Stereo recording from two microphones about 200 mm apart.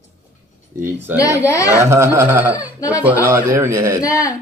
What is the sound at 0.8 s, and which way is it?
Speech, 10° right (ahead or behind).